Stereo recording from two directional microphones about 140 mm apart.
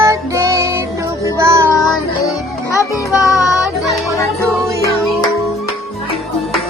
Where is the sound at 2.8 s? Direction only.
25° left (ahead or behind).